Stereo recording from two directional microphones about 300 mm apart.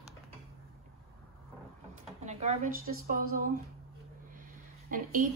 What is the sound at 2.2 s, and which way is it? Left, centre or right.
Speech, right.